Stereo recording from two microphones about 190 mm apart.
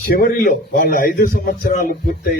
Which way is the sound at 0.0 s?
50° left (ahead or behind).